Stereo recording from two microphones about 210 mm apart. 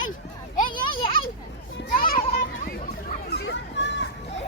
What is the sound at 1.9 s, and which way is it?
Children playing, 45° left (ahead or behind).